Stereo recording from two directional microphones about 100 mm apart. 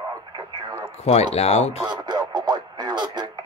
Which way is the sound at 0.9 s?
90° left.